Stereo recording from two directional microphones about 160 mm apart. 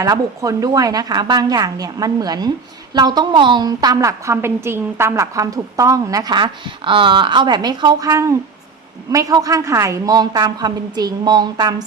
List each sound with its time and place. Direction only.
0.0 s a woman's voice: 20° right (ahead or behind)